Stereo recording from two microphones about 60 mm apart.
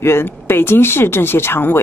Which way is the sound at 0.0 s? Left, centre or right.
Left.